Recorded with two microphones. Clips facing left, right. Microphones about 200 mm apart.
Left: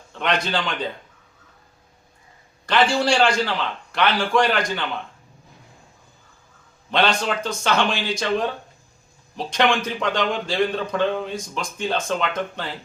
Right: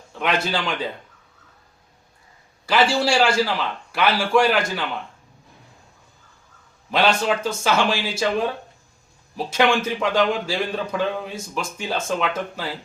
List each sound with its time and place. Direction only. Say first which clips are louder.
0.1 s speech: even; 5° right (ahead or behind)
2.6 s speech: even; 5° right (ahead or behind)
6.9 s speech: right 1 dB; 5° right (ahead or behind)
9.5 s speech: right 1 dB; 5° right (ahead or behind)